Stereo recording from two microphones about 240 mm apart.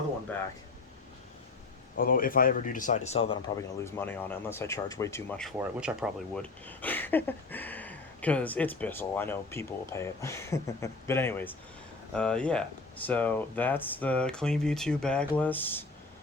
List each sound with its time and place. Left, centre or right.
2.0 s speech: left
3.8 s speech: centre
5.5 s speech: centre